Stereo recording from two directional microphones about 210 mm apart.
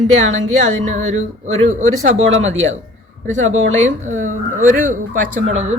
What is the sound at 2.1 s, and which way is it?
Speech, 70° right (ahead or behind).